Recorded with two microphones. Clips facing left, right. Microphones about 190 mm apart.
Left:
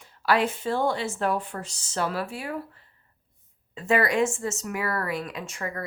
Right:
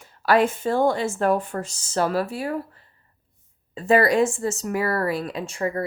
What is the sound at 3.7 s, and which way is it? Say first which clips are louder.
Speech: right 5 dB; 35° right (ahead or behind).